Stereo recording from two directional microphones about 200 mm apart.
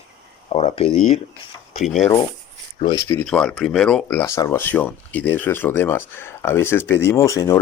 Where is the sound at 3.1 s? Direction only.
5° left (ahead or behind).